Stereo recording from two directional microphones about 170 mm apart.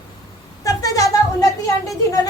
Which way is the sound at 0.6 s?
20° left (ahead or behind).